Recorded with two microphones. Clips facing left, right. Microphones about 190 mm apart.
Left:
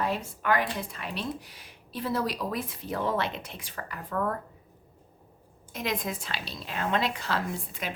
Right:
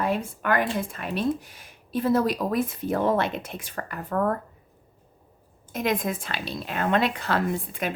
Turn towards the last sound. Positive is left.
turn(degrees=-55)  # may be behind; listen again after turning